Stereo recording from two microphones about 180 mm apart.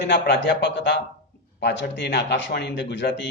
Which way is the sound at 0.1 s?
70° left (ahead or behind).